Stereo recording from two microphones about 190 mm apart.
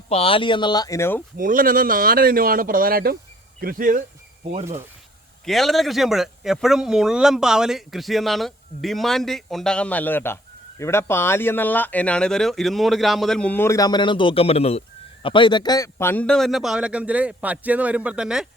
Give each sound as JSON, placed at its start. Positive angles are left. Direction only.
{"t": 0.1, "sound": "speech", "side_deg": 30}
{"t": 1.4, "sound": "speech", "side_deg": -45}
{"t": 5.5, "sound": "speech", "side_deg": 0}